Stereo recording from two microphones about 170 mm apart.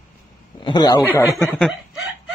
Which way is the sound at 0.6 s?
25° left (ahead or behind).